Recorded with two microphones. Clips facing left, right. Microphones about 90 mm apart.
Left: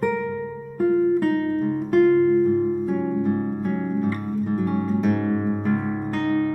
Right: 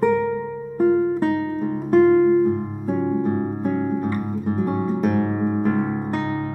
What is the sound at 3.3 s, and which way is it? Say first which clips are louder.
Music: right 1 dB; 25° right (ahead or behind).